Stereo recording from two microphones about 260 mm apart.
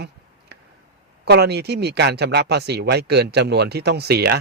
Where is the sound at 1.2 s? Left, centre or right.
Right.